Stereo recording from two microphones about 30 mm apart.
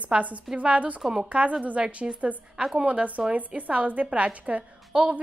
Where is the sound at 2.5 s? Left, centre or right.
Right.